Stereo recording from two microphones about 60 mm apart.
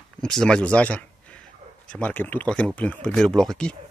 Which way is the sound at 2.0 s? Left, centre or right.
Left.